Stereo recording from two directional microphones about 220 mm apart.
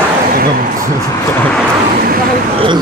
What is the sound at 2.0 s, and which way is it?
Speech, 40° right (ahead or behind).